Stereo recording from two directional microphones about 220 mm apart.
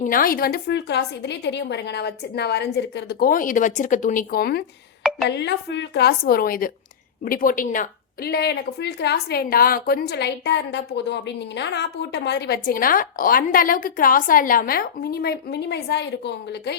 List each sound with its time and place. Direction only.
0.0 s a woman's voice: 40° left (ahead or behind)